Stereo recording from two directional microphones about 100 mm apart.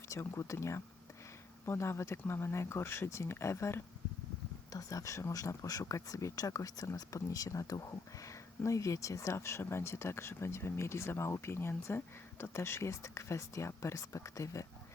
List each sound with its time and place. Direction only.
0.1 s speech: 30° left (ahead or behind)